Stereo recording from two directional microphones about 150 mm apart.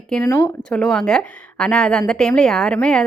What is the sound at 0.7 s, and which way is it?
A woman's voice, 5° left (ahead or behind).